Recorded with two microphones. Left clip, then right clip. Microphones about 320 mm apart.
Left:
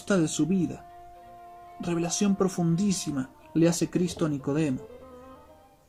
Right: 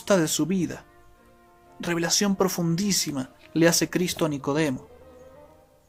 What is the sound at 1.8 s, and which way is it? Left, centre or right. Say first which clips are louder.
Speech: right 4 dB; centre.